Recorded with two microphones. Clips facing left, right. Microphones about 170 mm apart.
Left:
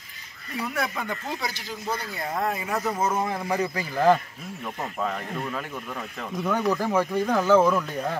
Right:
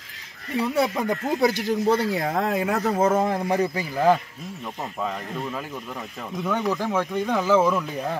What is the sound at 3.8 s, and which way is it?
Speech, centre (ahead or behind).